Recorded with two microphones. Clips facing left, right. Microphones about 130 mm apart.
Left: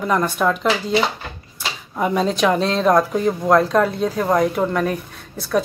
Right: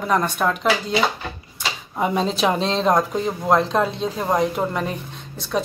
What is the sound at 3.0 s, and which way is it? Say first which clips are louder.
Speech: left 4 dB; 15° right (ahead or behind).